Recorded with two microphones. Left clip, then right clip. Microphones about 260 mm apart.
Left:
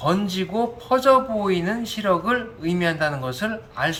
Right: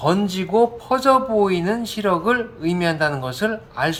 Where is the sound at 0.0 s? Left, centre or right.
Right.